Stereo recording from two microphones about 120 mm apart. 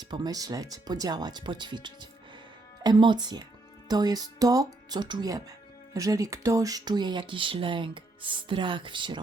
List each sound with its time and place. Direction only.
0.0 s speech: 35° right (ahead or behind)